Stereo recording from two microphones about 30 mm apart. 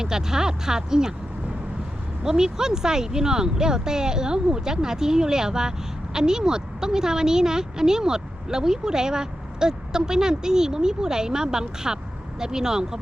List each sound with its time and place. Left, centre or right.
0.0 s a woman's voice: right
2.2 s a woman's voice: right